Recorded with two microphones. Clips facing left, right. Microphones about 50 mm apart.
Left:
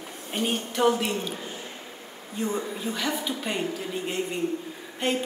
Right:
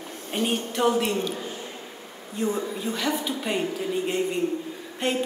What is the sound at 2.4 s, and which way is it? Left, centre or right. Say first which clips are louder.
A woman's voice: right 2 dB; centre.